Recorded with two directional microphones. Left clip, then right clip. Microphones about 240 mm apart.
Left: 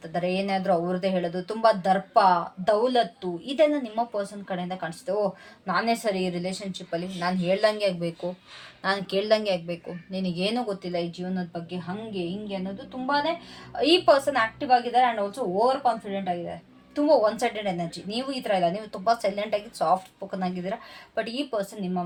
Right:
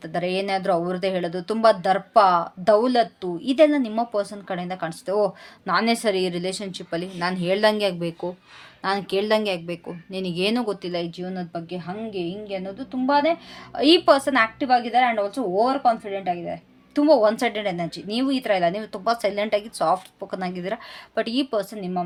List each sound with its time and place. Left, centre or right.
0.0 s a woman's voice: right